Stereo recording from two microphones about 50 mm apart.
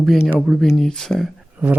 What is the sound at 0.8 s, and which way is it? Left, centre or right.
Speech, centre.